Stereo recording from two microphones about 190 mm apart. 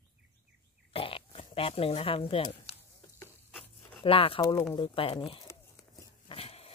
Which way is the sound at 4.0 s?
30° left (ahead or behind).